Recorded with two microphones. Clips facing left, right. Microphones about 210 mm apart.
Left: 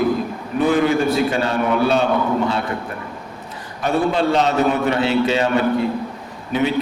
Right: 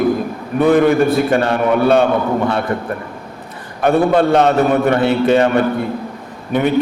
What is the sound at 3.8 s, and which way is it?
A man's voice, 55° right (ahead or behind).